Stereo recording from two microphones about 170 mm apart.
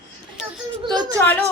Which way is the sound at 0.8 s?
25° right (ahead or behind).